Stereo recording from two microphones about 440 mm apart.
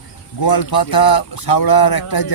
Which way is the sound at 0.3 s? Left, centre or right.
Left.